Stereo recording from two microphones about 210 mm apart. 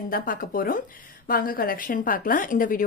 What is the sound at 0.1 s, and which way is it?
A woman's voice, 40° left (ahead or behind).